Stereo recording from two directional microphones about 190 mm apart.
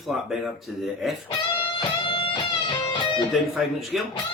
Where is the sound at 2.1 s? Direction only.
30° left (ahead or behind).